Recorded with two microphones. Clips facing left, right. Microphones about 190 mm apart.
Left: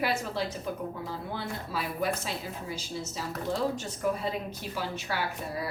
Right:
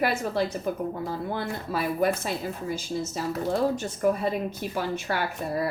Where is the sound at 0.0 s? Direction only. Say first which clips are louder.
Right 5 dB; 50° right (ahead or behind).